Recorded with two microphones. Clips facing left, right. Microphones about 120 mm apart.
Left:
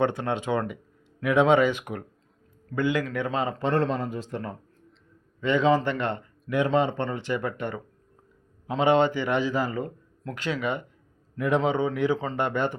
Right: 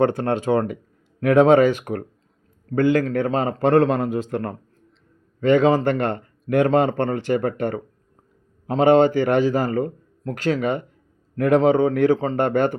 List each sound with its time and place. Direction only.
0.0 s a man's voice: 40° right (ahead or behind); by 4.5 s 60° right (ahead or behind)
5.4 s a man's voice: 50° right (ahead or behind)
11.3 s a man's voice: 55° right (ahead or behind); by 12.4 s 35° right (ahead or behind)
12.4 s a man's voice: 50° right (ahead or behind)